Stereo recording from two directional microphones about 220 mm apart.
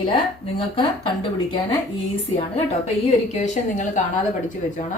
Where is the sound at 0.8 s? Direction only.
20° left (ahead or behind).